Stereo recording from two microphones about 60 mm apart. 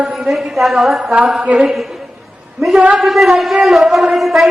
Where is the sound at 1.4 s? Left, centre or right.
Right.